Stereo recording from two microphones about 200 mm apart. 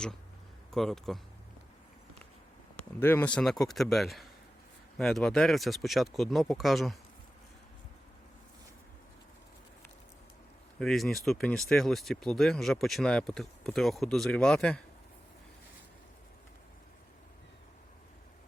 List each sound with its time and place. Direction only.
0.7 s speech: centre (ahead or behind)
3.0 s speech: 10° left (ahead or behind)
10.8 s speech: centre (ahead or behind)